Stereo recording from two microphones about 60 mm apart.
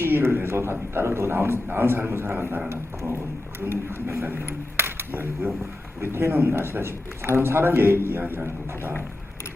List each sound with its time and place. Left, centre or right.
0.0 s speech: right